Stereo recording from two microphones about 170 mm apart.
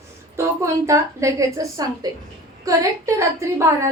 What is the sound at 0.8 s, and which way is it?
A woman's voice, 20° right (ahead or behind).